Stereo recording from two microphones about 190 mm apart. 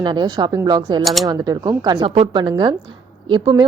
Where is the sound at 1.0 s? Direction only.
Centre (ahead or behind).